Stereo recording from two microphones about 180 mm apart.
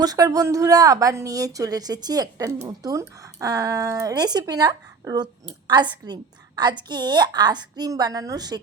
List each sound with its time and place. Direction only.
0.0 s speech: 20° right (ahead or behind)